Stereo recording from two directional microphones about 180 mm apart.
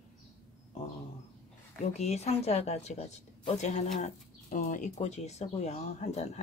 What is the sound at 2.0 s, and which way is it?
Speech, 35° left (ahead or behind).